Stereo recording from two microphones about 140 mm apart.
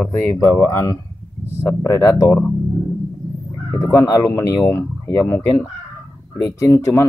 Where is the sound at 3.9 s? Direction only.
25° left (ahead or behind).